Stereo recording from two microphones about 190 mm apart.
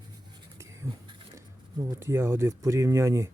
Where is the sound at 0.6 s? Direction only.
15° right (ahead or behind).